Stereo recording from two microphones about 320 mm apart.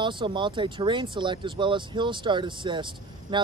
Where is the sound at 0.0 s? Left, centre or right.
Centre.